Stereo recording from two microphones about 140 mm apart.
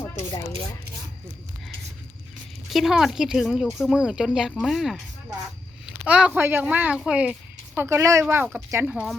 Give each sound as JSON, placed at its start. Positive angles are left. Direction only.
{"t": 2.6, "sound": "speech", "side_deg": 0}
{"t": 7.8, "sound": "speech", "side_deg": -20}